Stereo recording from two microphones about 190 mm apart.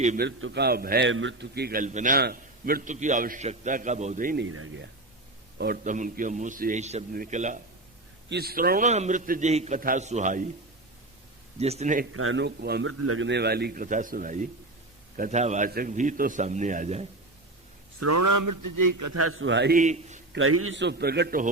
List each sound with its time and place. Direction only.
0.2 s a man's voice: 70° right (ahead or behind)
1.8 s a man's voice: 40° right (ahead or behind)
4.4 s speech: 90° right
5.5 s a man's voice: 50° right (ahead or behind)
8.3 s a man's voice: 55° right (ahead or behind); by 10.4 s 40° right (ahead or behind)
11.6 s a man's voice: 35° right (ahead or behind)
12.1 s a man's voice: 90° right; by 13.8 s 55° right (ahead or behind)
13.8 s a man's voice: 45° right (ahead or behind)
19.3 s a man's voice: 85° right
19.7 s a man's voice: 40° right (ahead or behind)
20.3 s a man's voice: 70° right (ahead or behind); by 21.5 s 45° right (ahead or behind)